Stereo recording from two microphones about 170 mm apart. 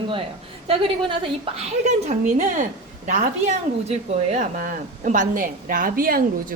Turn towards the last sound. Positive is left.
turn(degrees=-60)  # may be behind; listen again after turning